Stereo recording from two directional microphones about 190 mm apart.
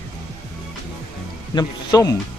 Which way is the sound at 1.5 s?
20° left (ahead or behind).